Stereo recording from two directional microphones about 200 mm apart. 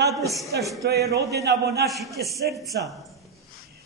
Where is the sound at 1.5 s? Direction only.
55° right (ahead or behind).